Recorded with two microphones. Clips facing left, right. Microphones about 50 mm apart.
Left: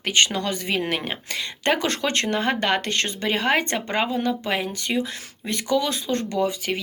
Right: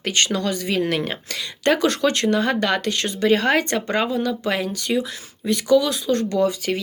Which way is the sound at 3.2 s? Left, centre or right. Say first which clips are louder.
Right 5 dB; centre.